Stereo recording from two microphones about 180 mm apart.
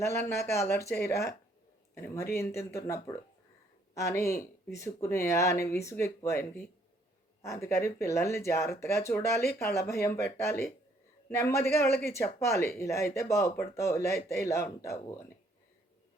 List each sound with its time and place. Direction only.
0.0 s speech: 15° left (ahead or behind)
2.3 s speech: 15° left (ahead or behind)